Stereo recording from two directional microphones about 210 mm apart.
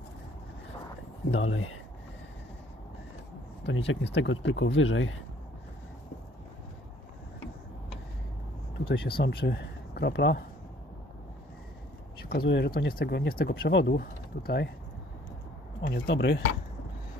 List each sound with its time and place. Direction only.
1.3 s speech: 70° left (ahead or behind)
3.6 s speech: 65° left (ahead or behind)
8.7 s speech: 50° left (ahead or behind)
12.3 s speech: 55° left (ahead or behind)
15.9 s speech: 55° left (ahead or behind)